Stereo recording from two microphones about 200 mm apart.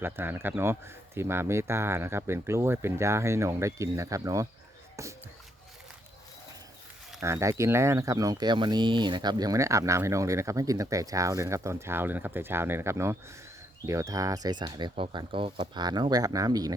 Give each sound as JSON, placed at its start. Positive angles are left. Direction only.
{"t": 0.0, "sound": "speech", "side_deg": -10}
{"t": 7.2, "sound": "speech", "side_deg": -15}